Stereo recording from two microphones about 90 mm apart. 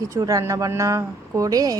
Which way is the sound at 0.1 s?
35° right (ahead or behind).